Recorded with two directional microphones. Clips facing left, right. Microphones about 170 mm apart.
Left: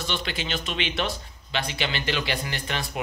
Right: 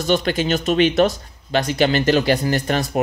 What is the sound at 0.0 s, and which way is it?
Speech, 45° right (ahead or behind).